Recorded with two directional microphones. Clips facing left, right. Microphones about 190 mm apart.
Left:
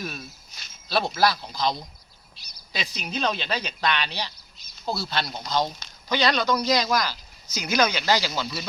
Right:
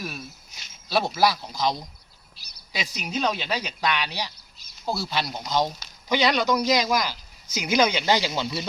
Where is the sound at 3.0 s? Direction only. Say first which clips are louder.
Right 1 dB; 15° right (ahead or behind).